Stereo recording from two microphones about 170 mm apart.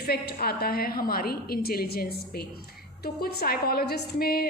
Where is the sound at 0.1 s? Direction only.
65° left (ahead or behind).